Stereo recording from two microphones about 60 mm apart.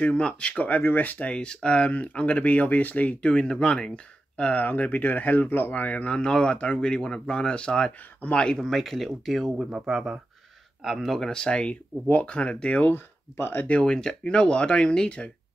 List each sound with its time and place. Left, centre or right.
0.0 s speech: centre
6.1 s speech: centre
8.7 s speech: centre
9.6 s speech: centre; by 12.9 s left
12.9 s speech: left
13.7 s speech: centre